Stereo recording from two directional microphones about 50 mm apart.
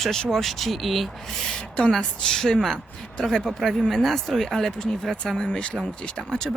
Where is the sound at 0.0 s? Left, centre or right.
Centre.